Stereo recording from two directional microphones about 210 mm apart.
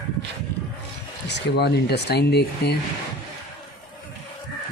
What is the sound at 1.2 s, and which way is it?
Speech, 55° left (ahead or behind).